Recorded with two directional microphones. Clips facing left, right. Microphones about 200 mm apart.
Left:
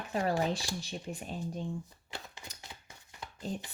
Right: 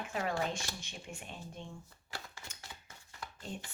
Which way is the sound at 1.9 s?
20° left (ahead or behind).